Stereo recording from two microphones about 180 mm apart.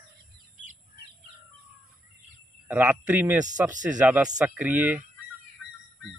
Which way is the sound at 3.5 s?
45° right (ahead or behind).